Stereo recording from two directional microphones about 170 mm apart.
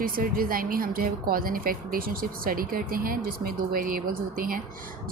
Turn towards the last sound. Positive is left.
turn(degrees=-55)  # may be behind; listen again after turning